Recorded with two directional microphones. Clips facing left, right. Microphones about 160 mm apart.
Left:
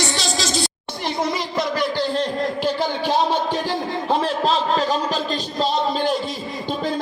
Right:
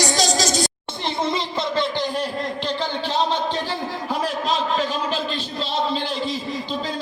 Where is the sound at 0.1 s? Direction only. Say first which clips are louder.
Right 3 dB; 40° right (ahead or behind).